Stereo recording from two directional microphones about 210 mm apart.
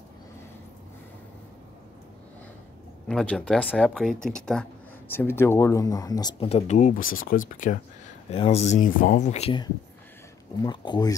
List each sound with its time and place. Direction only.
3.1 s speech: 5° left (ahead or behind); by 7.7 s 40° left (ahead or behind)
8.3 s speech: 30° left (ahead or behind)